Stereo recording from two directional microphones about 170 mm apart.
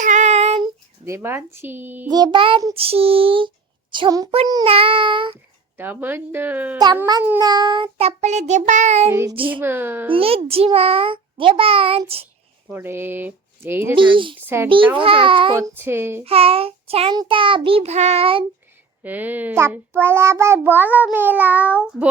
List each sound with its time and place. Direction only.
0.0 s child singing: 45° right (ahead or behind)
1.0 s child singing: 15° right (ahead or behind)
2.0 s a child's voice: 25° right (ahead or behind)
5.7 s child singing: 10° right (ahead or behind)
7.1 s a child's voice: 15° right (ahead or behind); by 9.0 s 40° right (ahead or behind)
9.5 s child singing: 10° right (ahead or behind)
10.1 s a child's voice: 35° right (ahead or behind)
12.6 s speech: 15° right (ahead or behind)
13.9 s speech: 30° right (ahead or behind)
14.4 s child singing: 15° right (ahead or behind)
14.9 s a child's voice: 30° right (ahead or behind)
15.5 s child singing: 15° right (ahead or behind)
16.2 s a child's voice: 35° right (ahead or behind)
19.0 s child singing: 10° right (ahead or behind)